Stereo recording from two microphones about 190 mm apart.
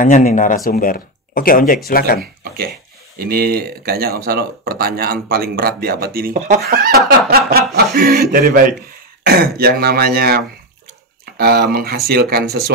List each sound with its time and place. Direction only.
0.0 s speech: 40° left (ahead or behind)
3.2 s speech: 55° right (ahead or behind)